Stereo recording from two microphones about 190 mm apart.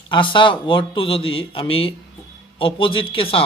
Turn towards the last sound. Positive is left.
turn(degrees=30)  # may be behind; listen again after turning